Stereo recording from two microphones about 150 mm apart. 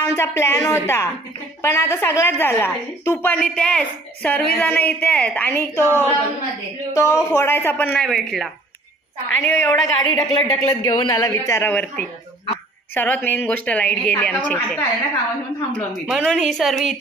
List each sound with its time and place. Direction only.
0.0 s a woman's voice: 15° left (ahead or behind); by 8.5 s centre (ahead or behind)
9.5 s a woman's voice: 15° left (ahead or behind)
16.1 s a woman's voice: centre (ahead or behind)